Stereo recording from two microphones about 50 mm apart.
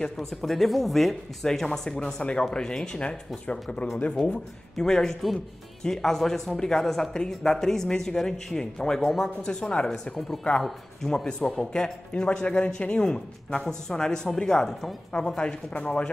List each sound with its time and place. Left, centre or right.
0.4 s speech: centre
9.4 s speech: left
9.8 s speech: centre
11.2 s speech: centre
15.1 s speech: centre